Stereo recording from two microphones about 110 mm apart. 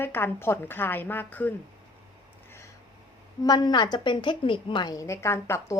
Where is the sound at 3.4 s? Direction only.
40° left (ahead or behind).